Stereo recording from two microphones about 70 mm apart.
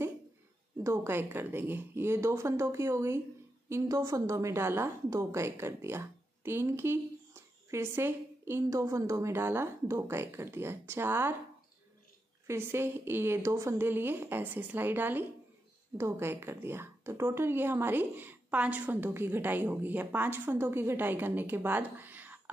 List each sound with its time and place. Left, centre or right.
0.8 s a woman's voice: right
8.6 s speech: right
9.3 s a woman's voice: right
12.4 s a woman's voice: right
16.0 s a woman's voice: right